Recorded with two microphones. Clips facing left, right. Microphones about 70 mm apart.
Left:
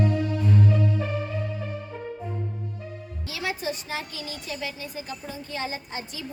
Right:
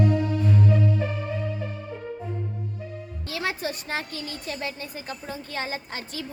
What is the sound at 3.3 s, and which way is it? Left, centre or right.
A woman's voice, right.